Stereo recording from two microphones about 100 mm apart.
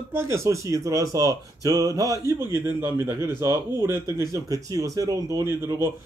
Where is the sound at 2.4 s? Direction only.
25° right (ahead or behind).